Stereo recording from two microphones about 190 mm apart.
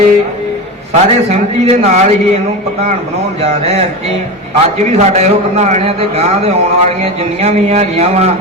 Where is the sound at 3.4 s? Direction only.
35° right (ahead or behind).